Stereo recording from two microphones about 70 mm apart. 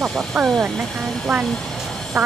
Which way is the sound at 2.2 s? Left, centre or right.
Right.